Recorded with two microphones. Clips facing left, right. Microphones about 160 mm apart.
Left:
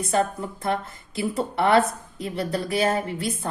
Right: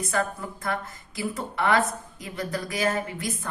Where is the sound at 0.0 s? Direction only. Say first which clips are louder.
Left 4 dB; 30° left (ahead or behind).